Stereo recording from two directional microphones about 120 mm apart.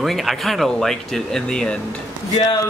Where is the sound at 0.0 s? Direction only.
Centre (ahead or behind).